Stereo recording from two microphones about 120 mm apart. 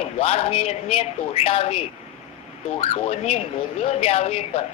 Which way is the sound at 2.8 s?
55° left (ahead or behind).